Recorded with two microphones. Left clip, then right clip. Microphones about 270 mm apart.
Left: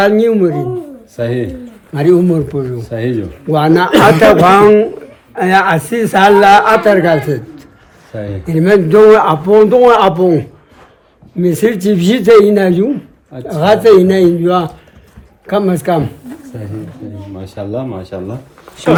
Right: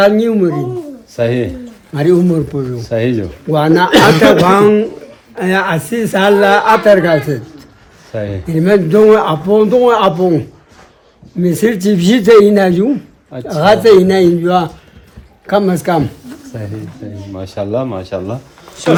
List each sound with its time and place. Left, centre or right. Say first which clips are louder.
0.0 s a man's voice: even; centre
1.1 s speech: right 3 dB; right
1.9 s a man's voice: left 1 dB; centre
2.8 s speech: right 3 dB; right
3.5 s a man's voice: even; centre
8.1 s speech: right 3 dB; centre
8.4 s a man's voice: left 2 dB; centre
17.3 s speech: right 4 dB; right